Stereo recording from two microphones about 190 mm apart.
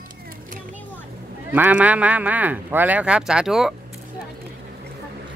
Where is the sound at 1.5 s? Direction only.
5° right (ahead or behind).